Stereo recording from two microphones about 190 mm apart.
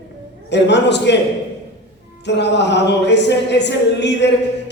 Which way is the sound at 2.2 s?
65° left (ahead or behind).